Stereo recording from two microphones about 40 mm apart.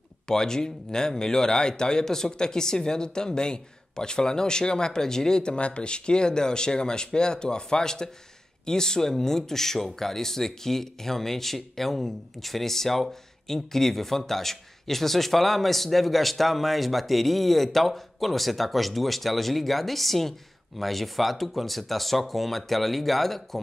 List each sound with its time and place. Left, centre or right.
0.3 s a man's voice: centre